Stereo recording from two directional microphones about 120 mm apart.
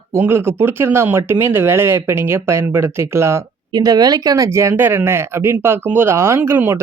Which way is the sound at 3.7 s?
30° right (ahead or behind).